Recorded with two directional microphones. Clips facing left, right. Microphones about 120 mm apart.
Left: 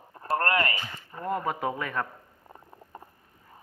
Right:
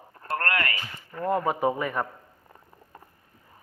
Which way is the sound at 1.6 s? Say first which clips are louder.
Right 4 dB; 5° right (ahead or behind).